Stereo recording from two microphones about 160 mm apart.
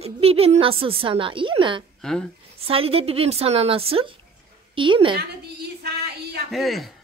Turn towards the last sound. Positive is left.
turn(degrees=0)  # may be behind; listen again after turning